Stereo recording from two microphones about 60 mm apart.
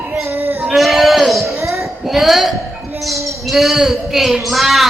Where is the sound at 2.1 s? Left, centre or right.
Centre.